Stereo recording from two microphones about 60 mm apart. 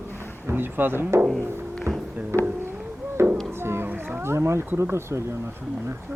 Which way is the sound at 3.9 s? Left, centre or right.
Right.